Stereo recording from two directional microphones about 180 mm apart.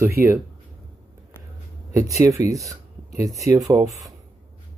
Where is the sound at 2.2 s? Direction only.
20° right (ahead or behind).